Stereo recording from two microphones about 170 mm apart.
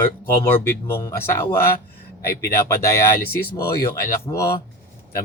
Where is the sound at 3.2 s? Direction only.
65° left (ahead or behind).